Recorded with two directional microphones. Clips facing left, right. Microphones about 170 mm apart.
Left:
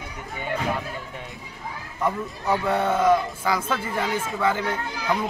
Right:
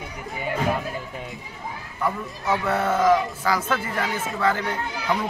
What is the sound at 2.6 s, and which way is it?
A man's voice, 15° left (ahead or behind).